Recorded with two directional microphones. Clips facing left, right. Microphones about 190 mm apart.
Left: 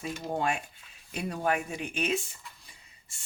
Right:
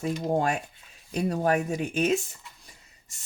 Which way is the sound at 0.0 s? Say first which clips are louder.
Right 6 dB; 45° right (ahead or behind).